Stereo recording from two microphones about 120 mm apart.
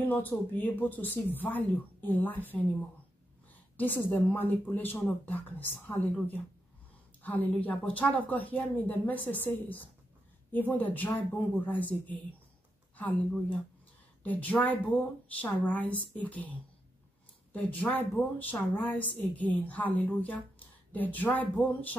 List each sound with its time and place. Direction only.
0.0 s a woman's voice: 15° left (ahead or behind)
3.7 s a woman's voice: 15° left (ahead or behind)